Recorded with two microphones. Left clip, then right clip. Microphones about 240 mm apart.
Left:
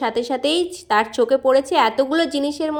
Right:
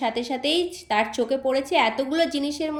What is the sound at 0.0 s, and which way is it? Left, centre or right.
A woman's voice, centre.